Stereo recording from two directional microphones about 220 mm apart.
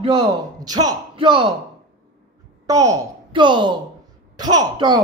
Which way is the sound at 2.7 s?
15° right (ahead or behind).